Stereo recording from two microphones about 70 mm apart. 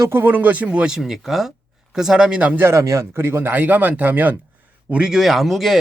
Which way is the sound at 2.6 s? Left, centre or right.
Right.